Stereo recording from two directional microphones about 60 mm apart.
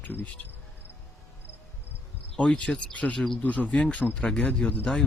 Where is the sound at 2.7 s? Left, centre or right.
Centre.